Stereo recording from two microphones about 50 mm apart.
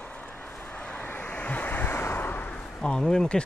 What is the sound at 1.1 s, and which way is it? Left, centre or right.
Waves, left.